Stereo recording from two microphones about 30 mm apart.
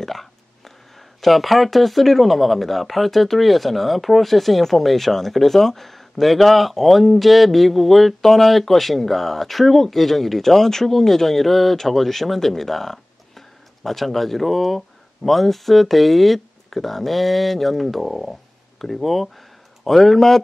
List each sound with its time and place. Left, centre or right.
0.0 s speech: centre